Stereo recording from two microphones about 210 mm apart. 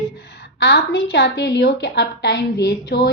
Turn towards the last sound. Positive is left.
turn(degrees=50)  # may be behind; listen again after turning